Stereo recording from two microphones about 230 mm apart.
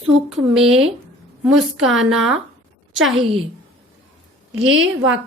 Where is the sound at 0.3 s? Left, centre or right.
Centre.